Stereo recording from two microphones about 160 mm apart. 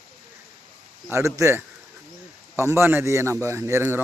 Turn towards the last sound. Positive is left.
turn(degrees=-15)  # may be behind; listen again after turning